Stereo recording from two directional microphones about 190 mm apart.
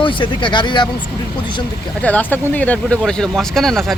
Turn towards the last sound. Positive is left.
turn(degrees=0)  # may be behind; listen again after turning